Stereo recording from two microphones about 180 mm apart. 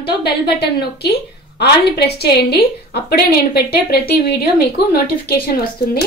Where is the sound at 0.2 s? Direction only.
65° left (ahead or behind).